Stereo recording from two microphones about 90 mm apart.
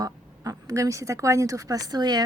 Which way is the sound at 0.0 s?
35° right (ahead or behind).